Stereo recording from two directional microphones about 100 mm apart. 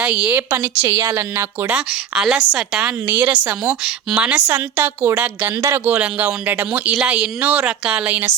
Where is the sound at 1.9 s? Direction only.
5° right (ahead or behind).